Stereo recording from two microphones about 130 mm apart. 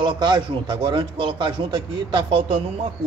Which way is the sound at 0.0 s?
35° right (ahead or behind).